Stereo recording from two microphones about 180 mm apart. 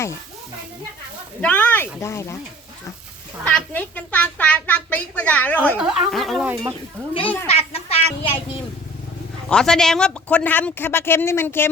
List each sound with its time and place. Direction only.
1.4 s a child's voice: 10° left (ahead or behind)
3.4 s a child's voice: 10° left (ahead or behind)
5.7 s speech: 5° right (ahead or behind)
7.1 s speech: 30° left (ahead or behind)
7.4 s a sound: 35° left (ahead or behind)
9.5 s a child's voice: 5° left (ahead or behind)